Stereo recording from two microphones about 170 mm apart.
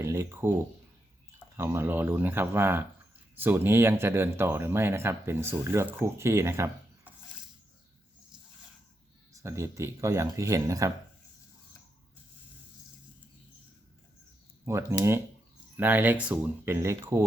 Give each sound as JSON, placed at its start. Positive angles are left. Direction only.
{"t": 0.0, "sound": "speech", "side_deg": -15}
{"t": 1.5, "sound": "speech", "side_deg": -15}
{"t": 9.3, "sound": "speech", "side_deg": -15}
{"t": 14.6, "sound": "speech", "side_deg": -15}